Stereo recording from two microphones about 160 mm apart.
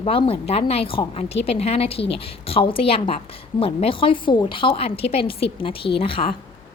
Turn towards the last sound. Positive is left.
turn(degrees=35)  # may be behind; listen again after turning